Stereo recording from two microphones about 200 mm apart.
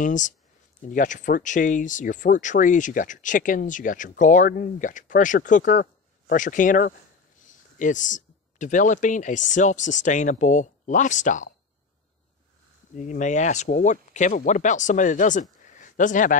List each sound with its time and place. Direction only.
0.0 s speech: 40° left (ahead or behind)
12.9 s speech: 40° left (ahead or behind)
15.6 s a sound: 40° left (ahead or behind)